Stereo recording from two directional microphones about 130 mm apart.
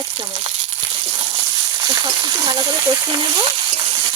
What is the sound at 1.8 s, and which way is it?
Frying, 30° right (ahead or behind).